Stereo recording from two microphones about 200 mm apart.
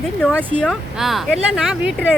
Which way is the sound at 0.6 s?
Centre (ahead or behind).